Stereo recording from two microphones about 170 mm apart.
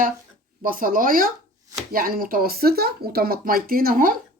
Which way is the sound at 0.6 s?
55° right (ahead or behind).